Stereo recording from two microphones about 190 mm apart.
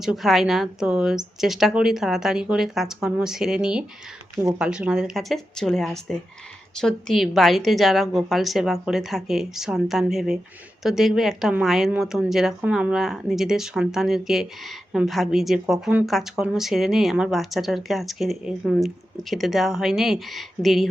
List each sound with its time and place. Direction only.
0.0 s a woman's voice: centre (ahead or behind)